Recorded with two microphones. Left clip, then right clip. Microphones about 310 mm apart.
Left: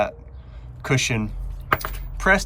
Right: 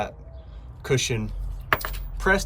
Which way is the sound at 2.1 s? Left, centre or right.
Centre.